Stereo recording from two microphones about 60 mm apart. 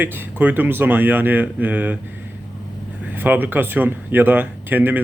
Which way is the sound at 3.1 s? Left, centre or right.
Right.